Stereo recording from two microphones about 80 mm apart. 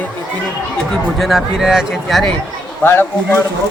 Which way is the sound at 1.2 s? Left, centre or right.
Centre.